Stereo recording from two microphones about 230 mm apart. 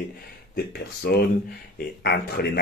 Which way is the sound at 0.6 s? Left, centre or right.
Left.